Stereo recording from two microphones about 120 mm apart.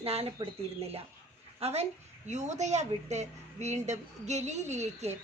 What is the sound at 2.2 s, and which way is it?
A woman's voice, 75° right (ahead or behind).